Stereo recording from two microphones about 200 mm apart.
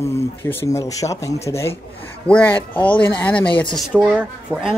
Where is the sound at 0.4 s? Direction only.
10° left (ahead or behind).